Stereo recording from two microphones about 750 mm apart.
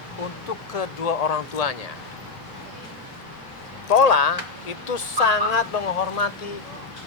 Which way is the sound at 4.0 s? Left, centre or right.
Left.